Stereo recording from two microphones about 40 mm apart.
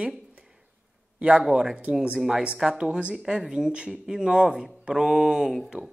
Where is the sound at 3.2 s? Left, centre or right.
Centre.